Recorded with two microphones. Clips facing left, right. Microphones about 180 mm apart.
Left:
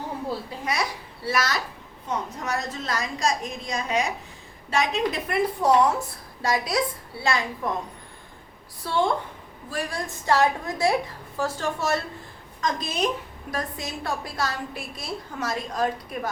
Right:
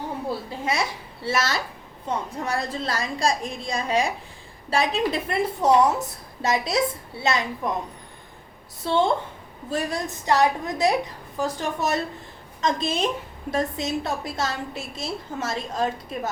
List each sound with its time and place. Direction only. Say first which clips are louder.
0.6 s a woman's voice: right 3 dB; 25° right (ahead or behind)
8.8 s a woman's voice: right 2 dB; 25° right (ahead or behind)